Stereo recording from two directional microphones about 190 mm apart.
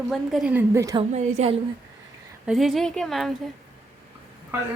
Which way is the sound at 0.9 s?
30° right (ahead or behind).